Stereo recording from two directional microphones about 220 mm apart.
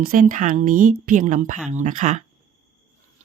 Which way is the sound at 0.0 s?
40° right (ahead or behind).